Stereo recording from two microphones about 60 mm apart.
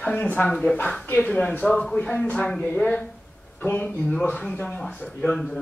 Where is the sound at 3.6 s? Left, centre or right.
Left.